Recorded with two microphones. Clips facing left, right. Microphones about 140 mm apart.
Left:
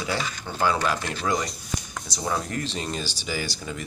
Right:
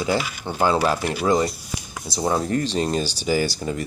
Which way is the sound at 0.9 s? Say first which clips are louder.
Right 6 dB; 10° right (ahead or behind).